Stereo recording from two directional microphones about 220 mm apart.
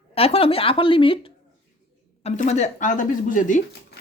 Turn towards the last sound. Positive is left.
turn(degrees=35)  # may be behind; listen again after turning